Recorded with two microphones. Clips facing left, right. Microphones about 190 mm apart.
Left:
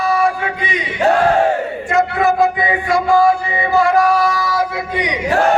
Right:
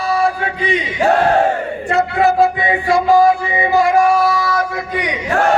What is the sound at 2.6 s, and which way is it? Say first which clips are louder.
Music: right 2 dB; 20° right (ahead or behind).